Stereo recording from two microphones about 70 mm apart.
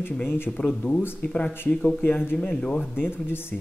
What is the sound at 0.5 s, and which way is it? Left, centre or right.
Speech, centre.